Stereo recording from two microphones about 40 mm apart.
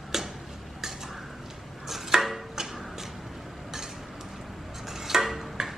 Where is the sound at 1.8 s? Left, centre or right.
Centre.